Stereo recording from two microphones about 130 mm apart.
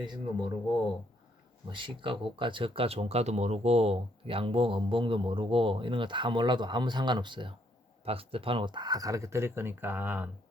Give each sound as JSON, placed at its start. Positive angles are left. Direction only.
{"t": 0.0, "sound": "speech", "side_deg": -35}
{"t": 1.7, "sound": "speech", "side_deg": -40}